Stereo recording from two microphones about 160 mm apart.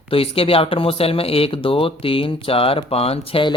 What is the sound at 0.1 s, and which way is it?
Speech, 35° left (ahead or behind).